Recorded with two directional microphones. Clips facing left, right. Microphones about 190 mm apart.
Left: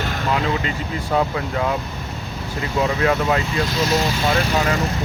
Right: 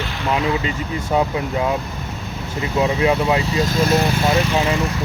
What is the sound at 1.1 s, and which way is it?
Speech, 15° right (ahead or behind).